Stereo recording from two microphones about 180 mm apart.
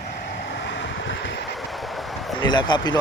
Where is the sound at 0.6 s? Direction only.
85° left.